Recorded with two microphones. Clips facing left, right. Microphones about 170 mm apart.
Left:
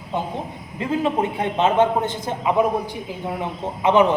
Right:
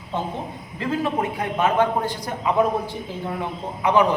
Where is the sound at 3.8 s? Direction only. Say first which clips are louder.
Left 2 dB; 25° left (ahead or behind).